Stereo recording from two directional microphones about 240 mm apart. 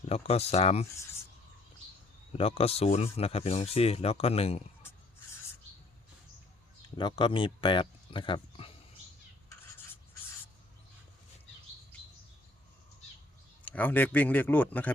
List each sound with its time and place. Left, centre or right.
0.1 s speech: left
2.3 s speech: left
6.9 s speech: centre
13.7 s a man's voice: centre